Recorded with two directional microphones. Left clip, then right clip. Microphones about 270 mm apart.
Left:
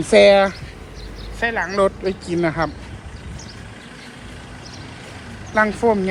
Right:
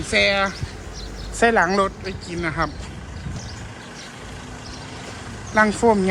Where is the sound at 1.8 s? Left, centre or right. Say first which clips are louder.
Left 5 dB; centre.